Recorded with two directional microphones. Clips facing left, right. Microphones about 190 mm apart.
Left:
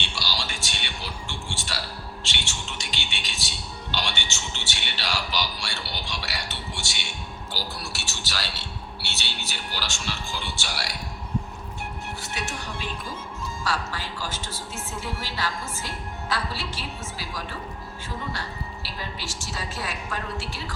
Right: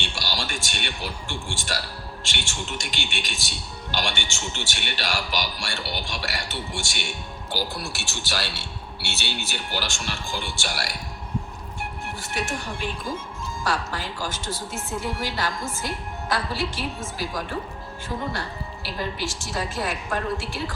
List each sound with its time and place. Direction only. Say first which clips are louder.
0.2 s a sound: right 2 dB; 50° right (ahead or behind)
1.3 s speech: right 4 dB; 50° right (ahead or behind)
12.2 s speech: right 6 dB; 50° right (ahead or behind)